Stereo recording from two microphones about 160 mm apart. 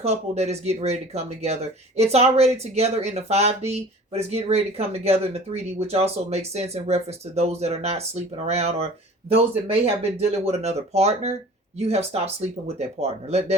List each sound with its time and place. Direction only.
0.0 s speech: 40° right (ahead or behind)